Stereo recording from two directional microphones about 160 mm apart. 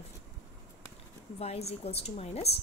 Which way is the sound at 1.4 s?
40° left (ahead or behind).